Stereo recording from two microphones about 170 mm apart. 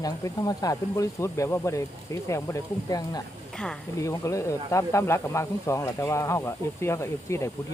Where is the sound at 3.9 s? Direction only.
20° left (ahead or behind).